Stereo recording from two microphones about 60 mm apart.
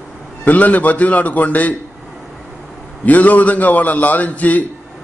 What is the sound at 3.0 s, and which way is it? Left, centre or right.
A man's voice, left.